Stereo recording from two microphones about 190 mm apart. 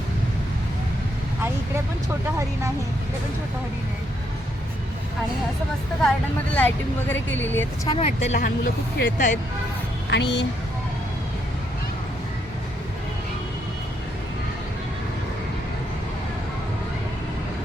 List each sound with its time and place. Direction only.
6.5 s speech: 10° left (ahead or behind)
7.9 s speech: 35° left (ahead or behind)
8.4 s speech: 50° left (ahead or behind)
10.1 s speech: 65° left (ahead or behind)